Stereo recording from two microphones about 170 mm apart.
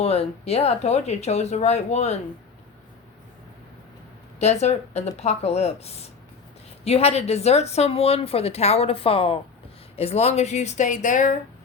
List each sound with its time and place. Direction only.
0.0 s speech: 35° left (ahead or behind)
4.4 s speech: 40° left (ahead or behind)